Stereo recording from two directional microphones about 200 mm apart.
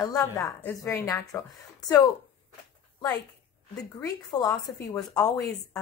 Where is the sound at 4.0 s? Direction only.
15° left (ahead or behind).